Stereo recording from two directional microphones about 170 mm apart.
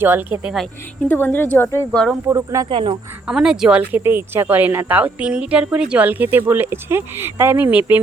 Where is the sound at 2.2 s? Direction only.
15° right (ahead or behind).